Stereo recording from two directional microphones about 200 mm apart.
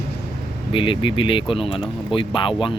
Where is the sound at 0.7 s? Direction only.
25° left (ahead or behind).